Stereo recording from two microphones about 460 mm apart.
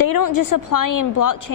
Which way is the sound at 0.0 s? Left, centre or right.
Left.